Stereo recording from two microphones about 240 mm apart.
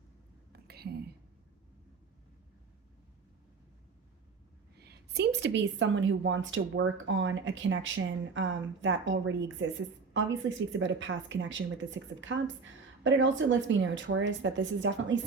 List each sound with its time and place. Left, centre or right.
0.5 s whispering: right
4.8 s a woman's voice: right
10.7 s a woman's voice: right